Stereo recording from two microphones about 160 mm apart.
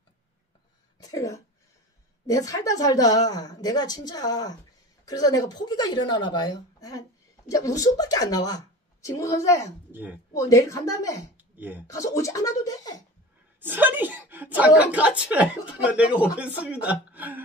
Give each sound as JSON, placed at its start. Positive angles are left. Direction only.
{"t": 0.9, "sound": "a woman's voice", "side_deg": 20}
{"t": 9.9, "sound": "a woman's voice", "side_deg": -10}
{"t": 10.3, "sound": "a woman's voice", "side_deg": 20}
{"t": 11.3, "sound": "a sound", "side_deg": -10}
{"t": 11.9, "sound": "a woman's voice", "side_deg": 20}
{"t": 13.6, "sound": "a woman's voice", "side_deg": -10}